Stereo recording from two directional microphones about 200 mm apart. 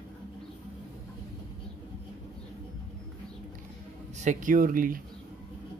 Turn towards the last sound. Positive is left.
turn(degrees=-45)  # may be behind; listen again after turning